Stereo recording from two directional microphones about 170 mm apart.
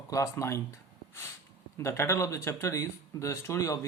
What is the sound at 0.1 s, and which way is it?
Speech, 20° left (ahead or behind).